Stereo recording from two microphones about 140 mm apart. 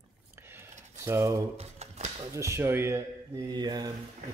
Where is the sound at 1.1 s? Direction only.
20° right (ahead or behind).